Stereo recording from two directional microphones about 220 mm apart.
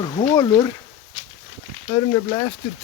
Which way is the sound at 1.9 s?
20° left (ahead or behind).